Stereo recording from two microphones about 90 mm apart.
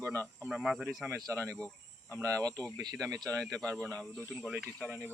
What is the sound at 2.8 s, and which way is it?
Speech, 40° right (ahead or behind).